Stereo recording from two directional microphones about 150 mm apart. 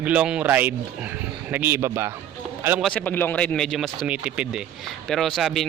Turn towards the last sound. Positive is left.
turn(degrees=0)  # may be behind; listen again after turning